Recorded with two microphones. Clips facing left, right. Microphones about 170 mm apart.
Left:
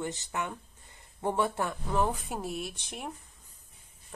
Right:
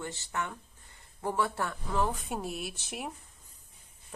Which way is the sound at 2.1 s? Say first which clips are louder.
Left 1 dB; centre (ahead or behind).